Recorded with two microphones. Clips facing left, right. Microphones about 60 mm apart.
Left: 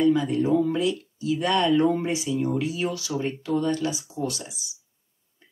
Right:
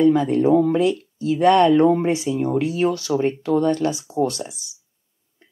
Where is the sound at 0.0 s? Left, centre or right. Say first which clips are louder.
Right 5 dB; right.